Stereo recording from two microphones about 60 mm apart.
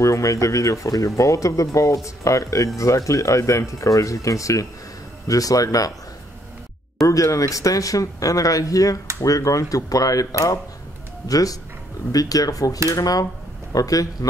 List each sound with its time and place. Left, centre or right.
0.0 s speech: left
7.0 s speech: left
11.2 s speech: left